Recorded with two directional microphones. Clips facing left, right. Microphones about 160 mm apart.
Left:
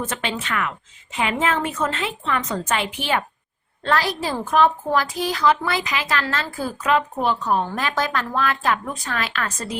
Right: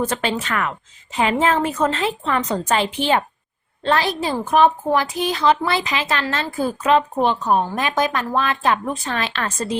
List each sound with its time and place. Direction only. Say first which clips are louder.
0.0 s a woman's voice: right 5 dB; 40° right (ahead or behind)